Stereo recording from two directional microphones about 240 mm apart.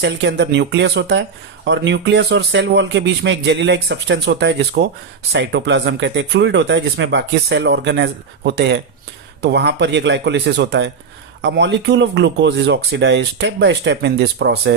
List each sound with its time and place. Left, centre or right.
0.0 s speech: right